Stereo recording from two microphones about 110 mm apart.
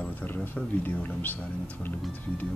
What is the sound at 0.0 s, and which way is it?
Speech, 15° left (ahead or behind).